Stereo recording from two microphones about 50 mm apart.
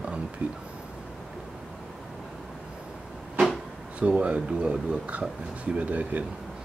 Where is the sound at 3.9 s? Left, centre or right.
Right.